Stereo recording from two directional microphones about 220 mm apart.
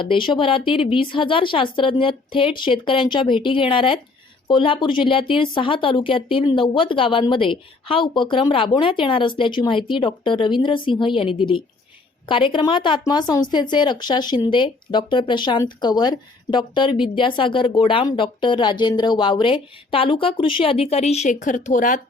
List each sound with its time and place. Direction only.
0.0 s speech: 20° left (ahead or behind)